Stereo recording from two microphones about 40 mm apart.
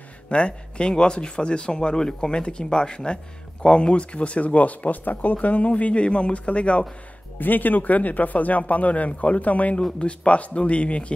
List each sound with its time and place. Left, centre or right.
0.3 s speech: left
7.3 s speech: left